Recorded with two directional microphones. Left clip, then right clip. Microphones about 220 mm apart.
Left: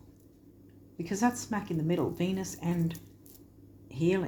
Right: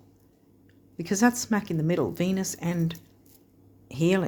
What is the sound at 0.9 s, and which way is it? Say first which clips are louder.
A woman's voice: right 6 dB; 50° right (ahead or behind).